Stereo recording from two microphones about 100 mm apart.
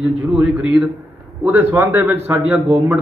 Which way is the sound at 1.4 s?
20° right (ahead or behind).